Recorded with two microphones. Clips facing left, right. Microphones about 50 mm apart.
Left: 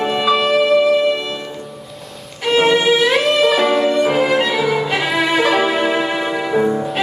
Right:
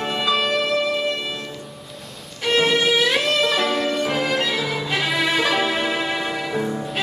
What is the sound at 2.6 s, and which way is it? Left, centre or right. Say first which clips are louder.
Music: left 6 dB; centre.